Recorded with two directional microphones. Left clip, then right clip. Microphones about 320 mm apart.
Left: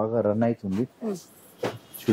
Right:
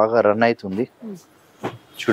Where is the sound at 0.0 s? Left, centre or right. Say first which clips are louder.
Right 8 dB; centre.